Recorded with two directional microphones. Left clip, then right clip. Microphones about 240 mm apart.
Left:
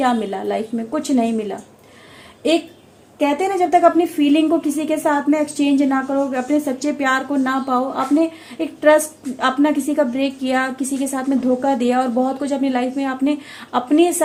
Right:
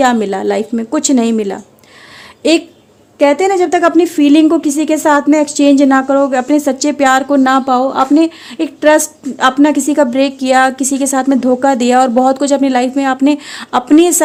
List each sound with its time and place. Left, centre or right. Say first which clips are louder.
0.0 s a woman's voice: right 7 dB; right
3.2 s a woman's voice: right 8 dB; right